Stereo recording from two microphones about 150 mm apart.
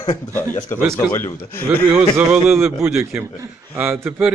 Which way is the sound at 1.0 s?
15° left (ahead or behind).